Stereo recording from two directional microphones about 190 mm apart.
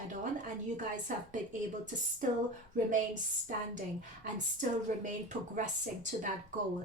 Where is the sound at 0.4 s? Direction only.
40° right (ahead or behind).